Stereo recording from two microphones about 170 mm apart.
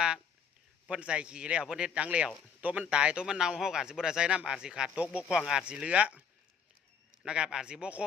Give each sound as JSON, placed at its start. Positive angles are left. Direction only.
{"t": 0.9, "sound": "speech", "side_deg": -5}